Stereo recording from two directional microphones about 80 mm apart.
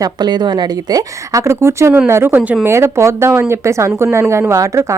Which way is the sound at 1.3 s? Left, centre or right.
Right.